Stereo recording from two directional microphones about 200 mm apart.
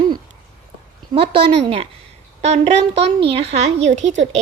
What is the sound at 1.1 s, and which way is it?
Speech, 25° right (ahead or behind).